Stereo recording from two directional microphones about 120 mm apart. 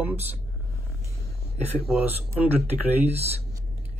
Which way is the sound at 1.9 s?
15° right (ahead or behind).